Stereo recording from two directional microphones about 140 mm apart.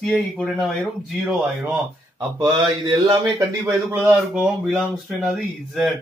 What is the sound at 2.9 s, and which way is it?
Speech, 35° right (ahead or behind).